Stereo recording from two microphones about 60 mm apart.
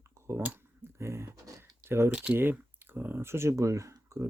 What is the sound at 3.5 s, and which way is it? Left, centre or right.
Speech, right.